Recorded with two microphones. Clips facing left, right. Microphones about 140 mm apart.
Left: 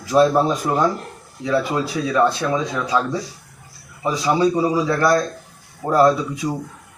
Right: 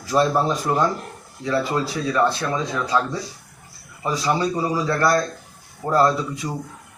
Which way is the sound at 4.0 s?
20° left (ahead or behind).